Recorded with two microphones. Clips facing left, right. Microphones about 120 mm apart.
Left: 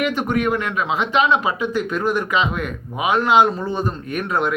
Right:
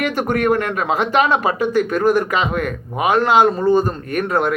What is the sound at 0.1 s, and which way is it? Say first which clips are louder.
Speech: right 3 dB; 45° right (ahead or behind).